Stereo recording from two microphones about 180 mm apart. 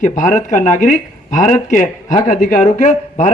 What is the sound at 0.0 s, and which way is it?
Speech, 45° left (ahead or behind).